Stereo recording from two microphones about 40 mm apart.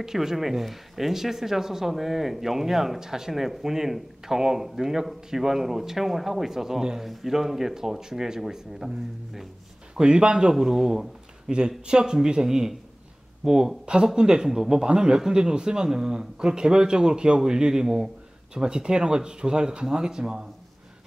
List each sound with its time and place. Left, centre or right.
0.0 s speech: centre
9.9 s a man's voice: right
10.5 s a man's voice: centre